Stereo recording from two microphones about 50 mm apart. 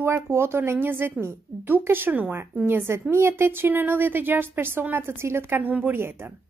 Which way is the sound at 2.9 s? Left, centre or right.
Right.